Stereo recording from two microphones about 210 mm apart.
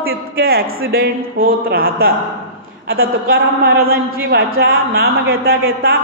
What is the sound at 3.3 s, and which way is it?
A man's voice, 50° right (ahead or behind).